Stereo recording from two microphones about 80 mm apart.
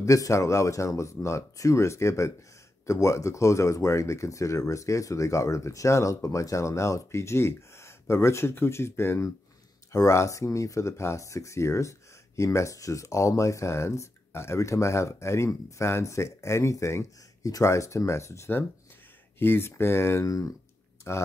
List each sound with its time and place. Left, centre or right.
0.0 s speech: left